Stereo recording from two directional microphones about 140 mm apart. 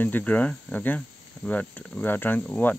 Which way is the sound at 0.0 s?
10° left (ahead or behind).